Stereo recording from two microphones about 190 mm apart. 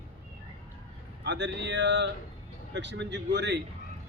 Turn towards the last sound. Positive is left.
turn(degrees=-60)  # may be behind; listen again after turning